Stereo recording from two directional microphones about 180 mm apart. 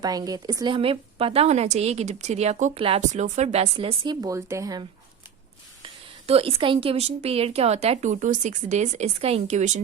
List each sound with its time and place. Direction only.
0.0 s a woman's voice: 20° right (ahead or behind)
6.2 s a woman's voice: 30° right (ahead or behind)